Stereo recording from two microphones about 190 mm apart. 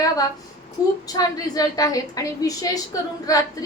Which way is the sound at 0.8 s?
20° left (ahead or behind).